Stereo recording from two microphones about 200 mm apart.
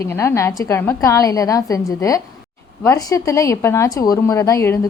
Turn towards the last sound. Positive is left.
turn(degrees=15)  # may be behind; listen again after turning